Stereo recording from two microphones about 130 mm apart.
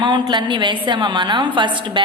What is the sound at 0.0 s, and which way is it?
A woman's voice, 35° right (ahead or behind).